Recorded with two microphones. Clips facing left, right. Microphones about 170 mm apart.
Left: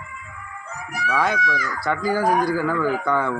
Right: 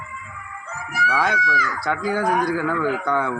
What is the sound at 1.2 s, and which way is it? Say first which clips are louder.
Speech: left 1 dB; 5° right (ahead or behind).